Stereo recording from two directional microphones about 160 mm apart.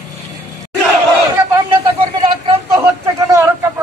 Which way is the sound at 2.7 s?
20° right (ahead or behind).